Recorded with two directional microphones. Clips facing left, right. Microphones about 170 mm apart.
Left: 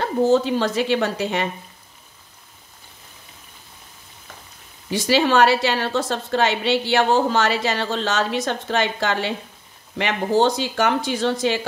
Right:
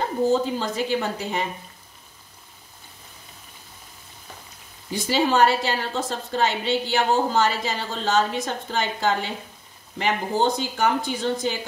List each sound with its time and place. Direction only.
0.0 s a woman's voice: 80° left
4.9 s a woman's voice: 80° left